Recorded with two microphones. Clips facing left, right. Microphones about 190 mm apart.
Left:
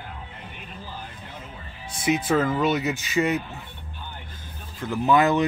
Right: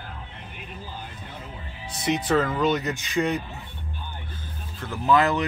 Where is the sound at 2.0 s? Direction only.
10° left (ahead or behind).